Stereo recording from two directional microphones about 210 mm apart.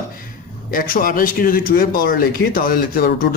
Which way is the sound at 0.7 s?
40° left (ahead or behind).